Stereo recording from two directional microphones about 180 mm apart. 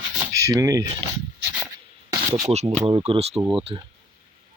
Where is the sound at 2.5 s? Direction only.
35° right (ahead or behind).